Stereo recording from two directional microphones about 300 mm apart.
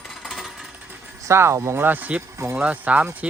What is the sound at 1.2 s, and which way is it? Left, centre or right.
Speech, centre.